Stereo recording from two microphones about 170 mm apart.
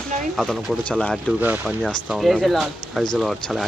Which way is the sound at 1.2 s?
5° right (ahead or behind).